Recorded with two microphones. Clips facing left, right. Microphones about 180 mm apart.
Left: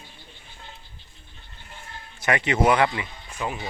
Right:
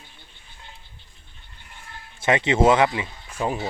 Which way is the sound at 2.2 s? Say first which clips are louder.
Right 3 dB; 25° right (ahead or behind).